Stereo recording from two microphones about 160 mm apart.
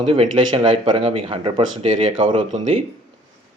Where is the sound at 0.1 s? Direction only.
35° right (ahead or behind).